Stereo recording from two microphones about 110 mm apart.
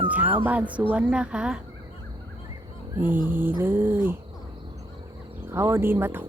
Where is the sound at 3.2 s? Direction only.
20° right (ahead or behind).